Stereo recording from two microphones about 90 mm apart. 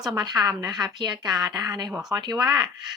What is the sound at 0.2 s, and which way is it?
A woman's voice, 45° right (ahead or behind).